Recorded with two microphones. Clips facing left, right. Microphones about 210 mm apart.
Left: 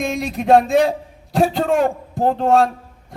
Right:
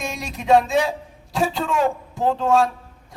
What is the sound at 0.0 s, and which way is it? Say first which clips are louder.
A man's voice: left 8 dB; 55° left (ahead or behind).